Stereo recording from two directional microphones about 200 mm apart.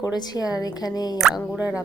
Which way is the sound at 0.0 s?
20° left (ahead or behind).